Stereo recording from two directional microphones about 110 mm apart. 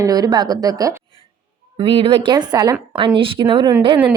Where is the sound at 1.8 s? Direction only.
55° right (ahead or behind); by 2.7 s 40° right (ahead or behind).